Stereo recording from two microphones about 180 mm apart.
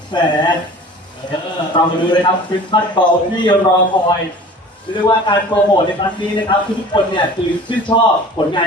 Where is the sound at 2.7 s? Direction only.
25° left (ahead or behind).